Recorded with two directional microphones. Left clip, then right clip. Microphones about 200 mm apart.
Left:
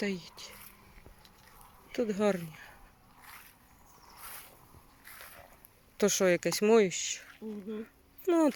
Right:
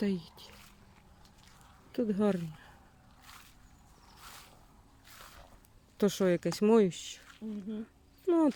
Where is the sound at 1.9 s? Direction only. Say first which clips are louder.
Left 2 dB; 15° right (ahead or behind).